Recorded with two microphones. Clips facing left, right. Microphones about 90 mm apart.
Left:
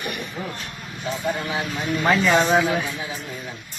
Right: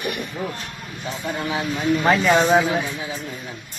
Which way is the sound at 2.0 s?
30° right (ahead or behind).